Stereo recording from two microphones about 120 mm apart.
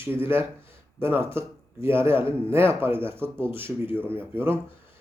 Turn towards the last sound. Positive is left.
turn(degrees=-20)  # may be behind; listen again after turning